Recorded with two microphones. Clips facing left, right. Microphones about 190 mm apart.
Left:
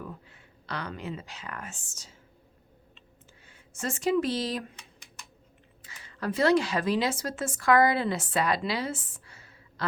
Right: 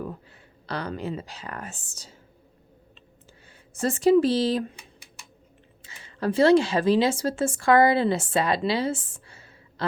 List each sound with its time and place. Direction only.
0.0 s speech: 35° right (ahead or behind)
3.8 s speech: 35° right (ahead or behind)
5.8 s speech: 25° right (ahead or behind)